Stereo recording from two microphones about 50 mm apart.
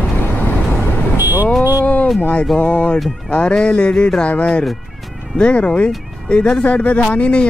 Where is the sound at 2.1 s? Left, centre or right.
Left.